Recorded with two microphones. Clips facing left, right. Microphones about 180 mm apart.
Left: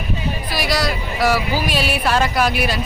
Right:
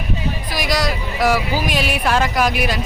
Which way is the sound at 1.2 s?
20° right (ahead or behind).